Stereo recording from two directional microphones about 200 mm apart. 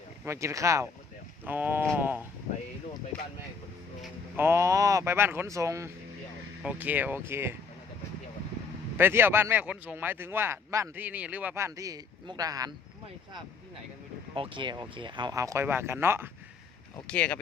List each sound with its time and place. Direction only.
0.3 s speech: 15° right (ahead or behind)
4.0 s speech: 10° right (ahead or behind)
9.0 s speech: 10° right (ahead or behind)
14.3 s speech: 25° right (ahead or behind)
17.1 s speech: 5° left (ahead or behind)